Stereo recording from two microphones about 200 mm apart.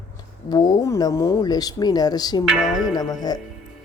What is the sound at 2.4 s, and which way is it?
Music, 5° right (ahead or behind).